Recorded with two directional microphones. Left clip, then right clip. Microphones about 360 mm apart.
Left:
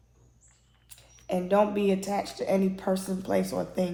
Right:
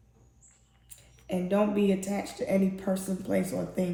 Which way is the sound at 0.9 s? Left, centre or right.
Centre.